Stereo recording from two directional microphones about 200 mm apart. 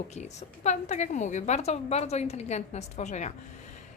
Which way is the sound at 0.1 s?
35° left (ahead or behind).